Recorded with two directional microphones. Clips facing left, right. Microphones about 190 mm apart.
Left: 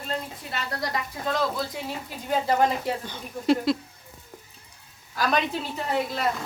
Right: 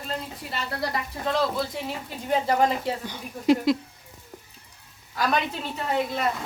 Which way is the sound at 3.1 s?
15° right (ahead or behind).